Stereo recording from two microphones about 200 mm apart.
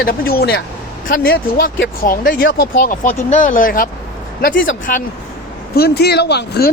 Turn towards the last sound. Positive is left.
turn(degrees=55)  # may be behind; listen again after turning